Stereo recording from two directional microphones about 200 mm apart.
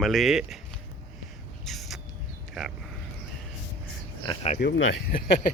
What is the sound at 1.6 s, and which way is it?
Rodents, centre (ahead or behind).